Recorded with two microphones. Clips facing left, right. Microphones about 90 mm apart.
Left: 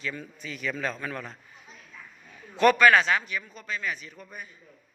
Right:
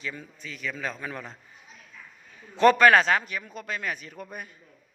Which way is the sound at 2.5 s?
25° right (ahead or behind).